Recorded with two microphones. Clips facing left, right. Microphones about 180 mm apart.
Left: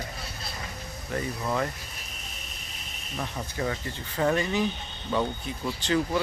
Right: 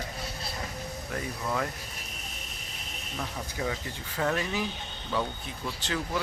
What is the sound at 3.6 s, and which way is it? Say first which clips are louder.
Speech: left 2 dB; 5° right (ahead or behind).